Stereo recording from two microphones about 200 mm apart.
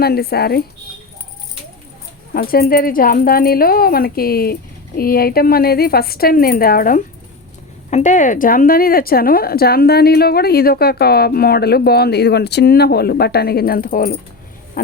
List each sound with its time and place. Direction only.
0.0 s speech: 50° left (ahead or behind)
2.3 s speech: 50° left (ahead or behind)